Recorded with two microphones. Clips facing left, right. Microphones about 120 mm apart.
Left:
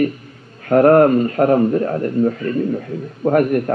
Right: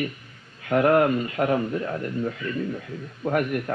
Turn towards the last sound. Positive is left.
turn(degrees=45)  # may be behind; listen again after turning